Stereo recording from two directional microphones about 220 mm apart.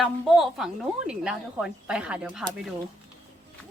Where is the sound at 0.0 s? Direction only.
Centre (ahead or behind).